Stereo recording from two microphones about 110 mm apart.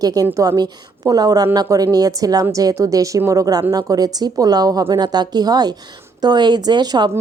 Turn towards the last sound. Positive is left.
turn(degrees=-40)  # may be behind; listen again after turning